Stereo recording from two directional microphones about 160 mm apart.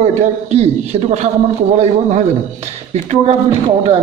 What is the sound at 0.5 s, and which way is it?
Speech, 40° right (ahead or behind).